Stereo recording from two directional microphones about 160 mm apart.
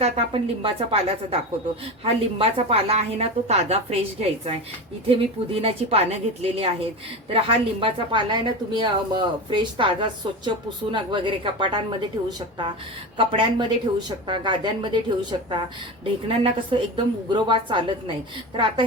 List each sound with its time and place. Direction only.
0.0 s a woman's voice: 35° right (ahead or behind)
13.1 s a woman's voice: 30° right (ahead or behind)